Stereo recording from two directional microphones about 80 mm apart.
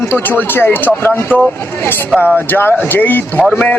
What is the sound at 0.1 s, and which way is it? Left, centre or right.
Speech, left.